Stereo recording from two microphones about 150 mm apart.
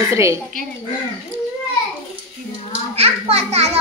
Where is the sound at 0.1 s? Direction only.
20° right (ahead or behind).